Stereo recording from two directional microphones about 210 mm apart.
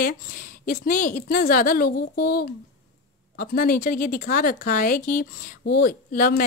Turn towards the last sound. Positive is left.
turn(degrees=45)  # may be behind; listen again after turning